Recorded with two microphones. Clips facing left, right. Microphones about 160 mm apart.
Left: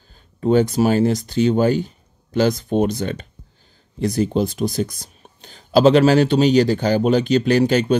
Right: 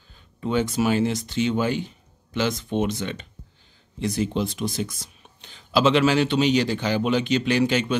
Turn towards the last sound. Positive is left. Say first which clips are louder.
# left 6 dB
turn(degrees=40)  # may be behind; listen again after turning